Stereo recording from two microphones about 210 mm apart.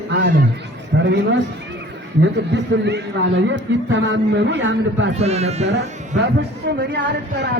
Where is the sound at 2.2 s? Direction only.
55° right (ahead or behind).